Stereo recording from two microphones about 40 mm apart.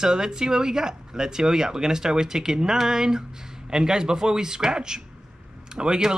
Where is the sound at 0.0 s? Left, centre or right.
Centre.